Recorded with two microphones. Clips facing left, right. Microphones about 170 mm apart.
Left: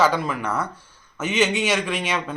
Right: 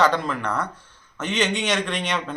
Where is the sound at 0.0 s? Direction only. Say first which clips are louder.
Even; 5° left (ahead or behind).